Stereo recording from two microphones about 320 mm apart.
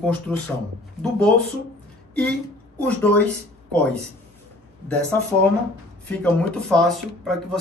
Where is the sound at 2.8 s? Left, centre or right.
Centre.